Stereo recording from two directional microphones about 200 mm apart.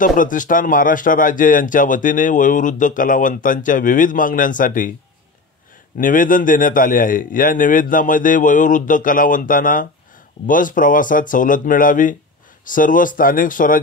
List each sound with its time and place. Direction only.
0.0 s speech: 40° left (ahead or behind)
5.9 s a man's voice: 45° left (ahead or behind)